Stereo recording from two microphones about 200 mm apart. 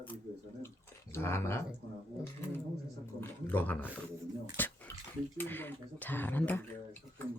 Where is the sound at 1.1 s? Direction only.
10° left (ahead or behind).